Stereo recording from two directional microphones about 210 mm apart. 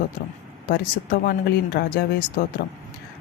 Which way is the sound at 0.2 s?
45° left (ahead or behind).